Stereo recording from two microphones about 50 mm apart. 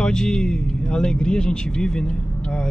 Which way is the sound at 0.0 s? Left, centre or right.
Centre.